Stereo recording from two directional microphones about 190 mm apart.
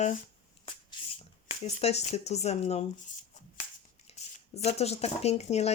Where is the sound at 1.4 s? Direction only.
35° left (ahead or behind).